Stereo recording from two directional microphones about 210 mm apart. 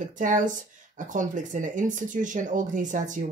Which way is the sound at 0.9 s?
40° right (ahead or behind).